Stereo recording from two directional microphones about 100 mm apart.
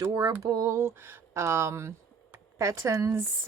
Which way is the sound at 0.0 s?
40° right (ahead or behind).